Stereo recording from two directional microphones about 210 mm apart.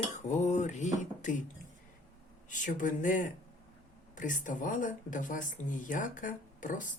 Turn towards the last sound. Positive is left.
turn(degrees=40)  # may be behind; listen again after turning